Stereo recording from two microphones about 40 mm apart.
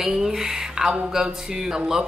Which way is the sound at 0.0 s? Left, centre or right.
Centre.